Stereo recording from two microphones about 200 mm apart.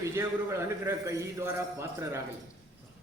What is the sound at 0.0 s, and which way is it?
A man's voice, 15° right (ahead or behind).